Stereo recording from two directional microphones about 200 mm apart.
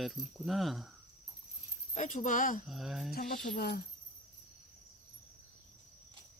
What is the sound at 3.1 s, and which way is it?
Speech, 50° left (ahead or behind).